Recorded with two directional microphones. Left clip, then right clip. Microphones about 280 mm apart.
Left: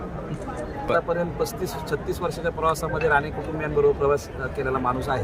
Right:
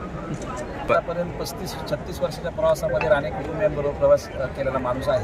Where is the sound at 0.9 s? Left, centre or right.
Centre.